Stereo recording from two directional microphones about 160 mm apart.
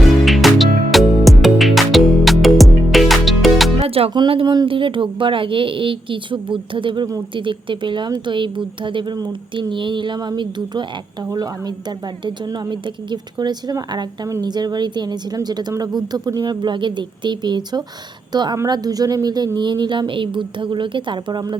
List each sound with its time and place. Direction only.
0.3 s music: centre (ahead or behind)
3.8 s a woman's voice: 40° right (ahead or behind)